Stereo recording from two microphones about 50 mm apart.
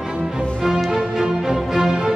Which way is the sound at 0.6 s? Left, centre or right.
Centre.